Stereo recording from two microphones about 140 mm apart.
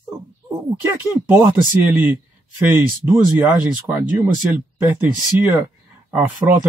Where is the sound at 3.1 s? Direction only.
15° right (ahead or behind).